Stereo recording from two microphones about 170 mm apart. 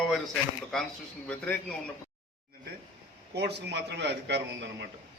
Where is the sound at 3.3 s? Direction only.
75° right (ahead or behind).